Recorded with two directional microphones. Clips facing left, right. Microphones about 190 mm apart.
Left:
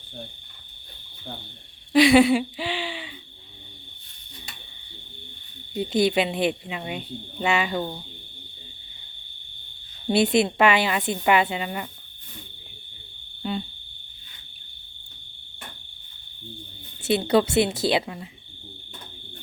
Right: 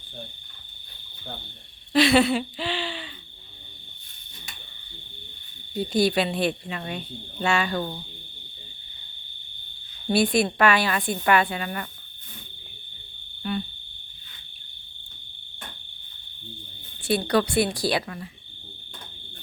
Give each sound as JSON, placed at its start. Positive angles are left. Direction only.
{"t": 1.9, "sound": "speech", "side_deg": 15}
{"t": 5.7, "sound": "speech", "side_deg": 20}
{"t": 10.1, "sound": "speech", "side_deg": 20}
{"t": 13.4, "sound": "cricket", "side_deg": 20}
{"t": 17.0, "sound": "speech", "side_deg": 20}